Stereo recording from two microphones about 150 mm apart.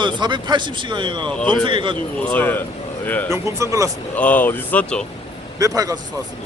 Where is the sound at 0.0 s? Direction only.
30° right (ahead or behind).